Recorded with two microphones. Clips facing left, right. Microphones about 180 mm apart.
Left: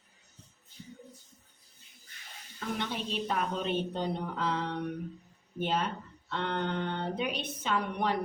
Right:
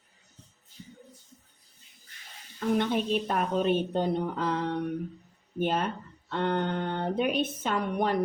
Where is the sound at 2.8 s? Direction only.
50° right (ahead or behind).